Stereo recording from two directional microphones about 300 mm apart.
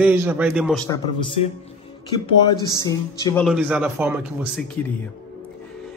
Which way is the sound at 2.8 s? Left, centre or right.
Centre.